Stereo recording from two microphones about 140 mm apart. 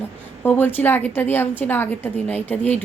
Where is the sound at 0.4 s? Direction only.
15° left (ahead or behind).